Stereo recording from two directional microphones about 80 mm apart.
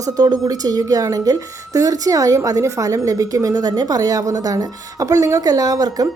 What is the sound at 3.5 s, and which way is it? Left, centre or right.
A woman's voice, right.